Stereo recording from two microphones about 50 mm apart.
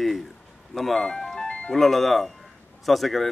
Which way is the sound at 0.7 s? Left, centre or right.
Centre.